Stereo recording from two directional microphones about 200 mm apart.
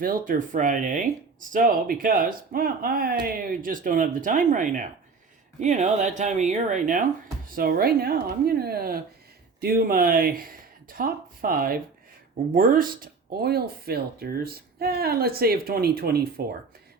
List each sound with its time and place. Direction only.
0.0 s speech: 45° right (ahead or behind)